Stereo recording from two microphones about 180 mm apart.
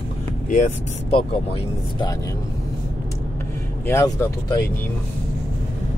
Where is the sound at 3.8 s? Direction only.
15° left (ahead or behind).